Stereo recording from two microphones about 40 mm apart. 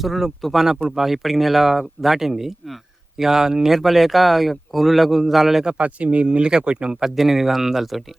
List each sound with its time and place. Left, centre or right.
0.0 s speech: centre
5.7 s speech: right
7.0 s speech: centre